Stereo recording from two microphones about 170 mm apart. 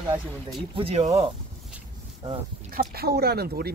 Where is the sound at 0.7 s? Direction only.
35° right (ahead or behind).